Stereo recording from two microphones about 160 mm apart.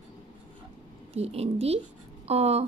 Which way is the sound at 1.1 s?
40° right (ahead or behind).